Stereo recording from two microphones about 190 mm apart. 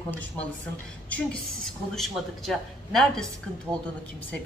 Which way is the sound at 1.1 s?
Centre (ahead or behind).